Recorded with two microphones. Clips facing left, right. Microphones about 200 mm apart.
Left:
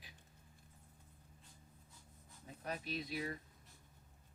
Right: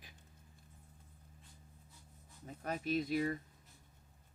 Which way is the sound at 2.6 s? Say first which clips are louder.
Right 7 dB; 50° right (ahead or behind).